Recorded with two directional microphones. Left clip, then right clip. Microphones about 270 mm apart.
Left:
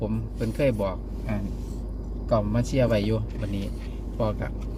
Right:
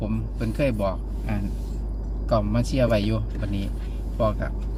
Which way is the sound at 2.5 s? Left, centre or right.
Centre.